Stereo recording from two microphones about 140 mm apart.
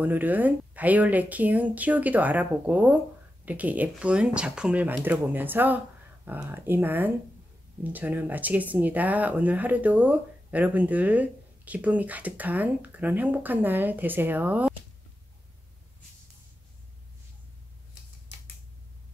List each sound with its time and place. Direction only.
0.0 s speech: 10° right (ahead or behind)